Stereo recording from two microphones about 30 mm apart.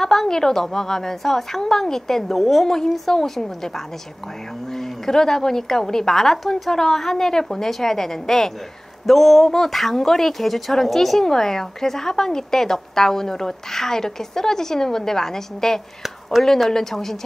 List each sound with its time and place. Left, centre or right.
0.0 s a woman's voice: centre
16.3 s speech: centre
16.7 s a woman's voice: centre